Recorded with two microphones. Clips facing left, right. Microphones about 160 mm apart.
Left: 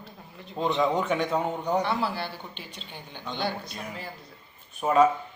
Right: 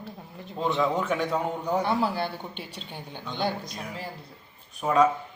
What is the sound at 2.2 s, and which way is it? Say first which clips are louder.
A man's voice: right 4 dB; 15° right (ahead or behind).